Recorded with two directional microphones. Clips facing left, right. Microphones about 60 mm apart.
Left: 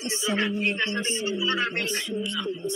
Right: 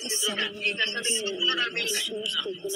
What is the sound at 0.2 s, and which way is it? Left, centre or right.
A man's voice, left.